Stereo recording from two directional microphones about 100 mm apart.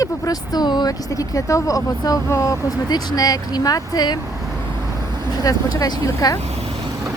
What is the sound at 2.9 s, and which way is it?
Speech, 45° left (ahead or behind).